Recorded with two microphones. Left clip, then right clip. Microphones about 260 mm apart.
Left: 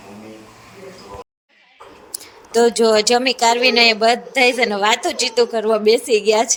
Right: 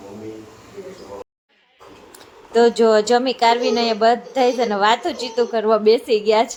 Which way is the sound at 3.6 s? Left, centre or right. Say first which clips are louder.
Left 6 dB; left.